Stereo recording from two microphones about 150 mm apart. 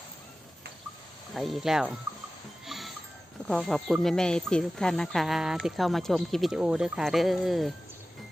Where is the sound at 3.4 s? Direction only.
Centre (ahead or behind).